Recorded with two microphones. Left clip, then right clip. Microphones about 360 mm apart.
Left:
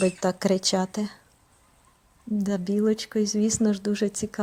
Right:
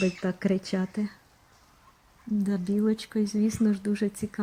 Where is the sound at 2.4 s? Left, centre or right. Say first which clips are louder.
Left 4 dB; centre.